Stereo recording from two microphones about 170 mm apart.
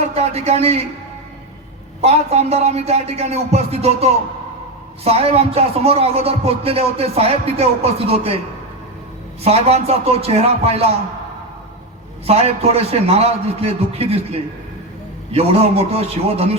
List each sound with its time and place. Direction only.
0.1 s a man's voice: 40° right (ahead or behind)
2.0 s speech: 40° right (ahead or behind)
9.4 s speech: 35° right (ahead or behind)
12.2 s speech: 35° right (ahead or behind)
15.3 s speech: 35° right (ahead or behind)